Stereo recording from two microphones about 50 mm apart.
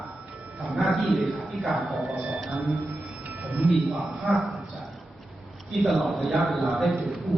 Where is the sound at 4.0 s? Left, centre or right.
Centre.